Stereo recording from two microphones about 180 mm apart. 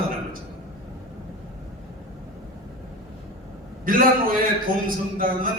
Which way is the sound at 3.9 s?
50° right (ahead or behind).